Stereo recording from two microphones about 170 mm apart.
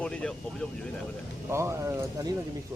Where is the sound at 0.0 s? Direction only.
5° left (ahead or behind).